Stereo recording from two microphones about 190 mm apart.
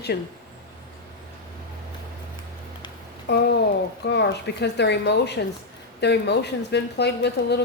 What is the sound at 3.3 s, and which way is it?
A woman's voice, 65° left (ahead or behind).